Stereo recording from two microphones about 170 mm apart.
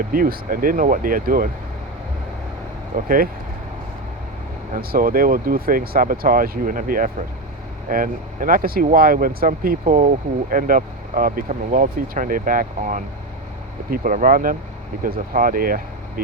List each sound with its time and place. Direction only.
0.1 s speech: 55° right (ahead or behind)
2.9 s speech: 55° right (ahead or behind)
4.7 s speech: 60° right (ahead or behind)